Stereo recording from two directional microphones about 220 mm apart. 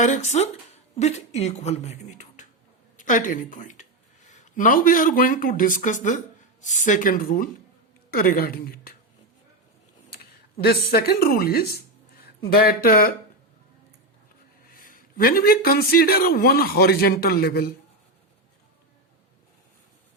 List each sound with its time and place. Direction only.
0.0 s speech: 35° left (ahead or behind)
10.6 s speech: 45° left (ahead or behind)
14.7 s speech: 40° left (ahead or behind)